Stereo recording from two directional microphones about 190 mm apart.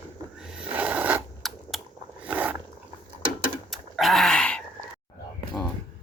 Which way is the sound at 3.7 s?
Centre (ahead or behind).